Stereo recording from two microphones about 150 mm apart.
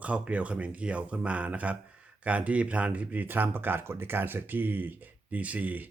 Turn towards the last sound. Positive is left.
turn(degrees=-10)  # may be behind; listen again after turning